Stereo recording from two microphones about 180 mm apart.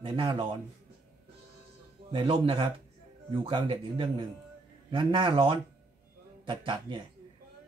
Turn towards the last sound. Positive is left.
turn(degrees=-25)  # may be behind; listen again after turning